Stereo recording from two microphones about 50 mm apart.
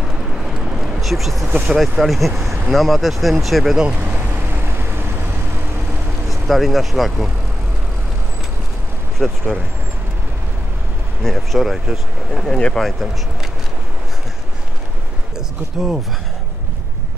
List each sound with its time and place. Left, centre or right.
0.7 s a sound: centre
1.8 s speech: centre
4.1 s vehicle: right
6.4 s speech: centre
9.2 s speech: centre
11.2 s speech: centre
12.4 s speech: centre
12.7 s speech: centre
15.3 s a sound: centre